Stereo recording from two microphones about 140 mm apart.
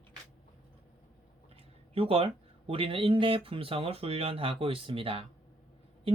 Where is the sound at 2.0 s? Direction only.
40° right (ahead or behind).